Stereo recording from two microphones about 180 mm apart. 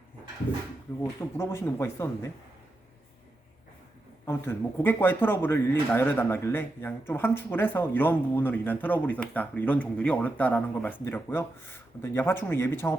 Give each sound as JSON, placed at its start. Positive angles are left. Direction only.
{"t": 1.0, "sound": "speech", "side_deg": 15}
{"t": 4.3, "sound": "speech", "side_deg": 10}